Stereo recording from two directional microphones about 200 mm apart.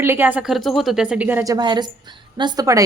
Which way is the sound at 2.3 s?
20° right (ahead or behind).